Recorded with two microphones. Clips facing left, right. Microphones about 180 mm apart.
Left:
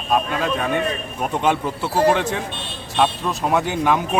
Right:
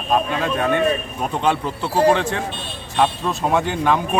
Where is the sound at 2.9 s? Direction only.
Centre (ahead or behind).